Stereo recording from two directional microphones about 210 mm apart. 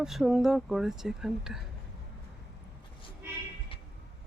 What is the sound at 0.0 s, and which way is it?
Speech, centre (ahead or behind).